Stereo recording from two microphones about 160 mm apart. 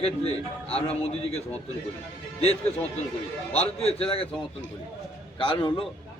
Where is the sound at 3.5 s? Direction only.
40° left (ahead or behind).